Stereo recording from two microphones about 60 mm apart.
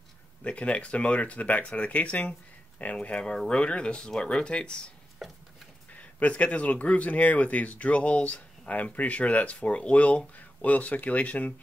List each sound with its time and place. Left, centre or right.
0.4 s speech: left
5.2 s a sound: centre
5.9 s speech: left